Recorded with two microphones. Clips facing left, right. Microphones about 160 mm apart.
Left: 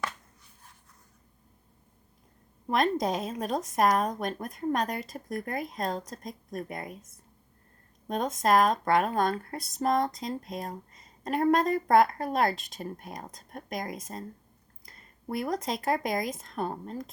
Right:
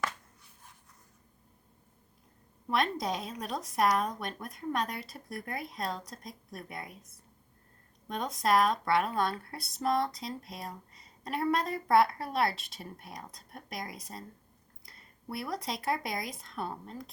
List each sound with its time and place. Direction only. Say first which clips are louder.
2.6 s speech: left 4 dB; 45° left (ahead or behind)
8.0 s speech: left 4 dB; 45° left (ahead or behind)